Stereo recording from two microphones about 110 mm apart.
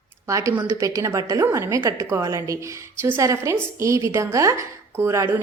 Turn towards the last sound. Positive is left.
turn(degrees=-25)  # may be behind; listen again after turning